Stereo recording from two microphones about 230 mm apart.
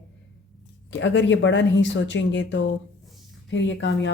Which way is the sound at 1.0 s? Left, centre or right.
Left.